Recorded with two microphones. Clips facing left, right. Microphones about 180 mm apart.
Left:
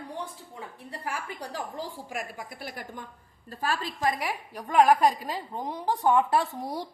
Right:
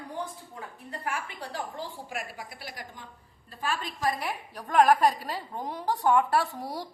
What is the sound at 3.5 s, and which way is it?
Speech, 40° left (ahead or behind).